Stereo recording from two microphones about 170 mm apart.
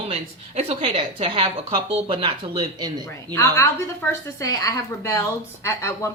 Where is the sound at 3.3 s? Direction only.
15° left (ahead or behind).